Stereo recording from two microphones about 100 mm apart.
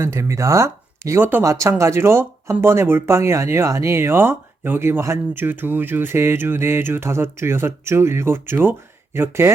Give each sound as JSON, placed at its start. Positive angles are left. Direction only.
{"t": 0.0, "sound": "speech", "side_deg": -25}